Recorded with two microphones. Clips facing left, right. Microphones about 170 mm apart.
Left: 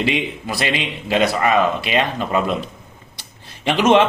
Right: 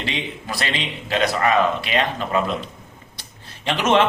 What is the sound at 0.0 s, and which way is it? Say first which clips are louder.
Speech: left 7 dB; 10° left (ahead or behind).